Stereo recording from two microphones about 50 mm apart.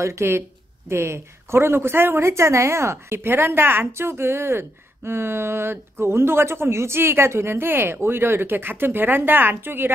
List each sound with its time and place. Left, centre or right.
0.0 s a woman's voice: right